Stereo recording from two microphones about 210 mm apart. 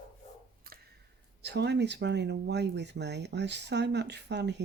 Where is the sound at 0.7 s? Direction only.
45° right (ahead or behind).